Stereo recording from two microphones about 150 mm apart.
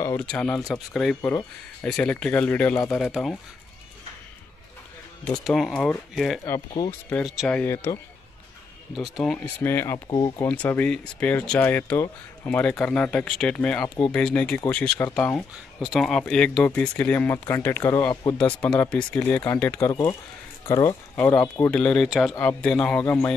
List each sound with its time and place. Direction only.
0.0 s speech: 15° left (ahead or behind)
0.3 s speech: 5° left (ahead or behind)
2.9 s speech: centre (ahead or behind)
5.4 s speech: centre (ahead or behind)
6.7 s speech: 35° left (ahead or behind)
7.4 s speech: 10° left (ahead or behind)
7.7 s speech: 20° left (ahead or behind)
8.9 s speech: centre (ahead or behind)
10.0 s speech: 25° left (ahead or behind)
10.4 s speech: 10° left (ahead or behind)
15.5 s speech: 5° right (ahead or behind)
19.9 s speech: 25° left (ahead or behind)
21.6 s speech: 5° left (ahead or behind)